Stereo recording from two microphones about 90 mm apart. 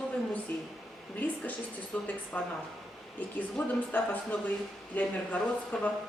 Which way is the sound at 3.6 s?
10° left (ahead or behind).